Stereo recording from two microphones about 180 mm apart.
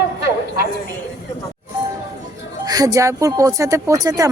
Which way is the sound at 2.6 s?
20° right (ahead or behind).